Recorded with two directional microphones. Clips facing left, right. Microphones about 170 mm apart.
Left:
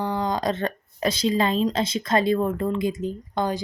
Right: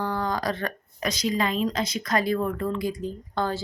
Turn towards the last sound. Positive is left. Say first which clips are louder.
# left 2 dB
turn(degrees=15)  # may be behind; listen again after turning